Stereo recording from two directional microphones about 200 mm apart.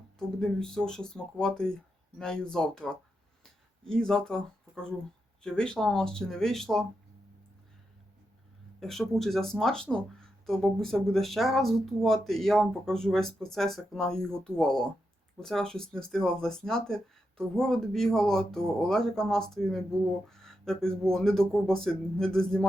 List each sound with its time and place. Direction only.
0.2 s speech: centre (ahead or behind)
8.8 s speech: centre (ahead or behind)